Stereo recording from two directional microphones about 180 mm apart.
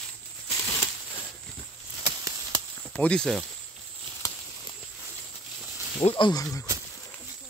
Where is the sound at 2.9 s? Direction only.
5° left (ahead or behind).